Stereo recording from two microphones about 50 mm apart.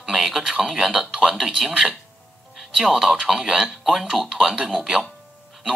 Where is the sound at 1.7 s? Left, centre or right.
Centre.